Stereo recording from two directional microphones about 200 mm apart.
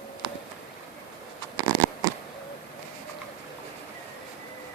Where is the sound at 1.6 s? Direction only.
20° right (ahead or behind).